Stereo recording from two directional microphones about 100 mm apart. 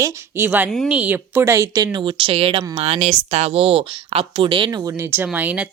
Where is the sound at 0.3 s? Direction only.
20° right (ahead or behind).